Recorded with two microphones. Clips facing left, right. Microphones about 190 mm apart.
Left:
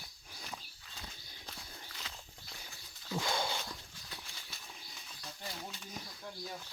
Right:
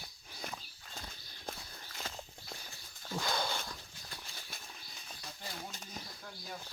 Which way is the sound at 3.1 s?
50° right (ahead or behind).